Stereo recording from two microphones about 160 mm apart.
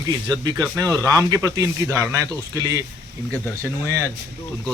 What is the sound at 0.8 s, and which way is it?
Speech, 20° right (ahead or behind).